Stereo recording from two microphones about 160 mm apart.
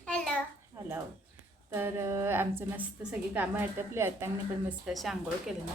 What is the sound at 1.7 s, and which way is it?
A woman's voice, 15° right (ahead or behind).